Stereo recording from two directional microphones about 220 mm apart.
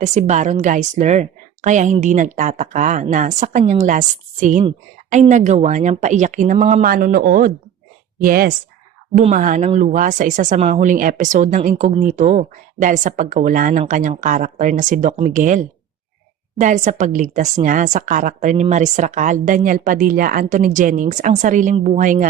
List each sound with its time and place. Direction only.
0.0 s speech: 30° right (ahead or behind)